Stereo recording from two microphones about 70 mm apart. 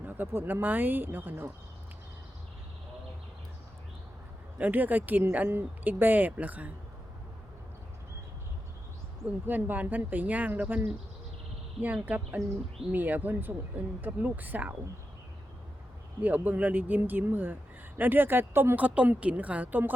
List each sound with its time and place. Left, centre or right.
0.0 s speech: right
4.5 s speech: right
9.2 s speech: right
12.0 s speech: right
16.2 s speech: right
18.8 s speech: right